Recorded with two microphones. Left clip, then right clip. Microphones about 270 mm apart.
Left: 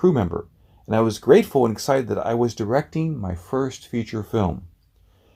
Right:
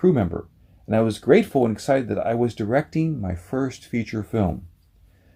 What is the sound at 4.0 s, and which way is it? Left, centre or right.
Speech, left.